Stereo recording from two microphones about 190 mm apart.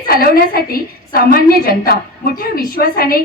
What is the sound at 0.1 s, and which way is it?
A woman's voice, 50° left (ahead or behind).